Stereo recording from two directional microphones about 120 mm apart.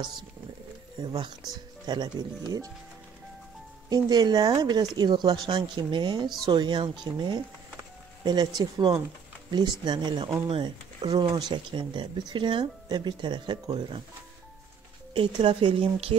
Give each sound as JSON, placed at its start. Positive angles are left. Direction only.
{"t": 1.0, "sound": "speech", "side_deg": -40}
{"t": 3.9, "sound": "speech", "side_deg": -35}
{"t": 15.1, "sound": "speech", "side_deg": -45}